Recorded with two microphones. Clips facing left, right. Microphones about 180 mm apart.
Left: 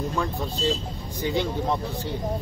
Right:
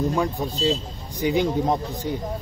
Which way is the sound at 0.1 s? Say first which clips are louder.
Right 4 dB; 15° right (ahead or behind).